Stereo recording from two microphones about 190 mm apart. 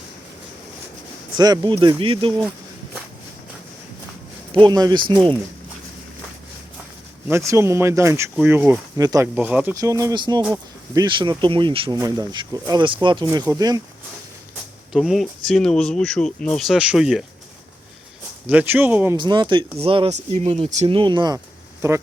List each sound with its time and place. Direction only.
1.4 s speech: 20° right (ahead or behind)
4.5 s speech: 25° right (ahead or behind)
7.3 s speech: 15° right (ahead or behind)
14.9 s speech: centre (ahead or behind)
18.4 s speech: 10° right (ahead or behind)
19.1 s speech: 25° right (ahead or behind)